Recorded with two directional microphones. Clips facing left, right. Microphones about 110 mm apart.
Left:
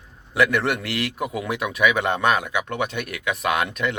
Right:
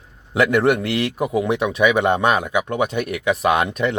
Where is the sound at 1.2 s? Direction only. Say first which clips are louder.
Right 6 dB; 35° right (ahead or behind).